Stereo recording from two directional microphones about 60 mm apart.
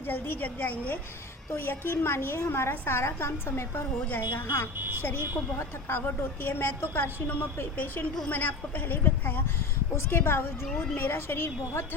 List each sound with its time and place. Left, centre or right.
0.1 s a woman's voice: left
4.8 s speech: right
5.9 s a woman's voice: left